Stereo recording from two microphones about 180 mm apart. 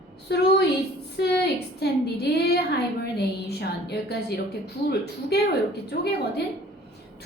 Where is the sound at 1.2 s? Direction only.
65° left (ahead or behind).